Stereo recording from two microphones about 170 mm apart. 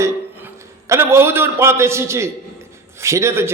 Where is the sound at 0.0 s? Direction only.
15° right (ahead or behind).